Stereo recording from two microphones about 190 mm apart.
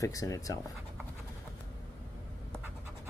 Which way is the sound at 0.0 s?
15° left (ahead or behind).